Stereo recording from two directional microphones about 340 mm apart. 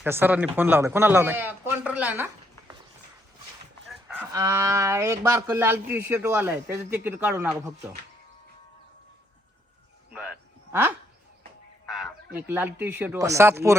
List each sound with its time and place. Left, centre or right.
0.0 s a man's voice: centre
3.8 s speech: centre
10.1 s a sound: centre
11.9 s speech: centre